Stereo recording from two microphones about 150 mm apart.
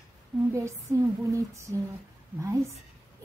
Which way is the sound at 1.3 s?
20° right (ahead or behind).